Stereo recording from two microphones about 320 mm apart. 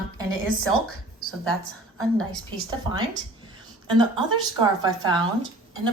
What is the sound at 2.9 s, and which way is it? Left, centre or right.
Speech, centre.